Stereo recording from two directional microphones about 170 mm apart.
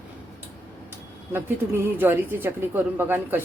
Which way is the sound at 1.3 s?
15° right (ahead or behind).